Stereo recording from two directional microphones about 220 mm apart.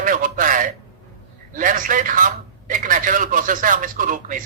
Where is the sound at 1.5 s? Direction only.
35° right (ahead or behind).